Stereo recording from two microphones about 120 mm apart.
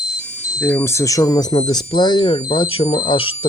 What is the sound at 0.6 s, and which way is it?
Speech, 20° left (ahead or behind).